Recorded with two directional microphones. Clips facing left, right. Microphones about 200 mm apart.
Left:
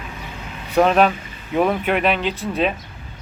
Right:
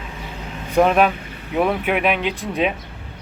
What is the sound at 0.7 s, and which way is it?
Speech, 10° right (ahead or behind).